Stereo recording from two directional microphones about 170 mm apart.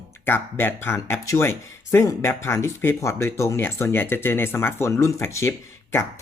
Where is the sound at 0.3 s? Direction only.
15° left (ahead or behind).